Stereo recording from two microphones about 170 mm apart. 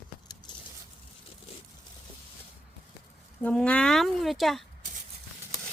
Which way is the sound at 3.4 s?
5° left (ahead or behind).